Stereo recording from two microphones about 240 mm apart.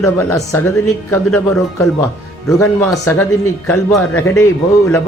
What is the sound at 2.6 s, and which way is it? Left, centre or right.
A man's voice, centre.